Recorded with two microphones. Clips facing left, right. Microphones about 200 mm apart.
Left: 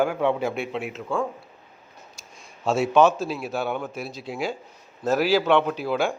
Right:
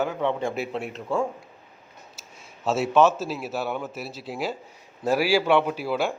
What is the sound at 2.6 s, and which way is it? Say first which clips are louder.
Speech: left 1 dB; 5° right (ahead or behind).